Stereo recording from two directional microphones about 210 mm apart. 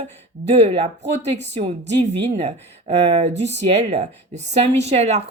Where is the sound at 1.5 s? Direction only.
30° right (ahead or behind).